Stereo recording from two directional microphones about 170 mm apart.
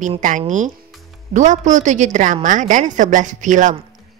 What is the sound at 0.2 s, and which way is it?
A woman's voice, 45° right (ahead or behind).